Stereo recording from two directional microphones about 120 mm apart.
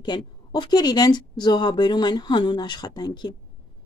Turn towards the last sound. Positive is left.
turn(degrees=40)  # may be behind; listen again after turning